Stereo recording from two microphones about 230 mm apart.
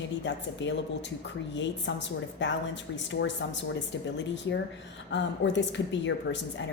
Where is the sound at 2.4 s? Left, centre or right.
Left.